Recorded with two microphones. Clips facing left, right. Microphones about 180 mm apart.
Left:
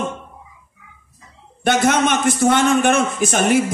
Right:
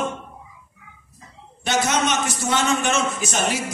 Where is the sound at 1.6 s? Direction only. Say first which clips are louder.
Left 5 dB; 55° left (ahead or behind).